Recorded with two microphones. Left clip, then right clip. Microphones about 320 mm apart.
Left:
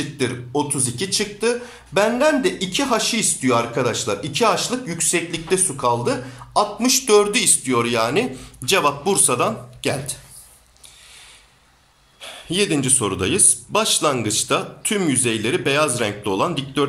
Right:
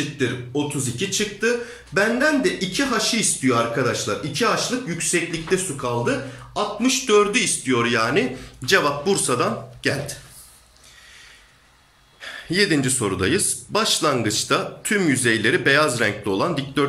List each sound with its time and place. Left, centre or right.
0.2 s speech: centre
12.2 s speech: centre